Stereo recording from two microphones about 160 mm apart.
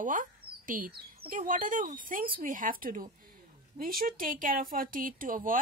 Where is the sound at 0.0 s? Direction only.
55° right (ahead or behind).